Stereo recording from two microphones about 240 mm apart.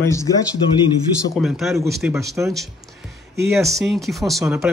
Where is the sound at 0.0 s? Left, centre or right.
Centre.